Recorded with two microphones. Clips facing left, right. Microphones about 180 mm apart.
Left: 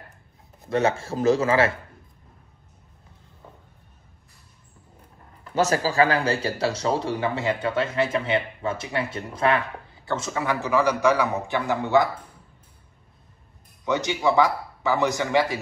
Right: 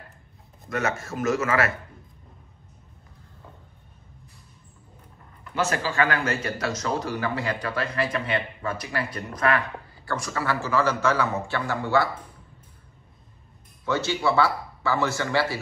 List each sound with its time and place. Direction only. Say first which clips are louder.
0.7 s speech: left 5 dB; 30° left (ahead or behind)
5.4 s speech: left 4 dB; 40° left (ahead or behind); by 12.1 s 20° left (ahead or behind)
13.8 s a man's voice: left 2 dB; 15° left (ahead or behind)